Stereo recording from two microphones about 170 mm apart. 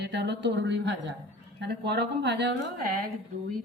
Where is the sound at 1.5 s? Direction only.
80° right.